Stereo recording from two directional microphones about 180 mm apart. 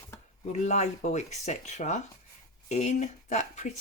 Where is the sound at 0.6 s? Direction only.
40° left (ahead or behind).